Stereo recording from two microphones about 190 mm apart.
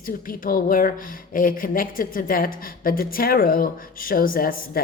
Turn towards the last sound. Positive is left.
turn(degrees=50)  # may be behind; listen again after turning